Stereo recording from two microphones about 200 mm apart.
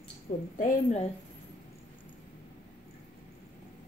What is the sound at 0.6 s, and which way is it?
Speech, 40° left (ahead or behind).